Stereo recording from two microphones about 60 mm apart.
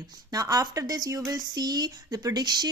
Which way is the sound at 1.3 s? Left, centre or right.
Right.